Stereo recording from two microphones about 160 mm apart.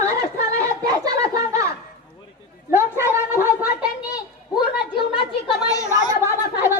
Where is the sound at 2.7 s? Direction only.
15° right (ahead or behind).